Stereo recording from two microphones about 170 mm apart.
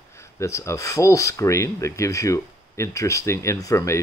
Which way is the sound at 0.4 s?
15° left (ahead or behind).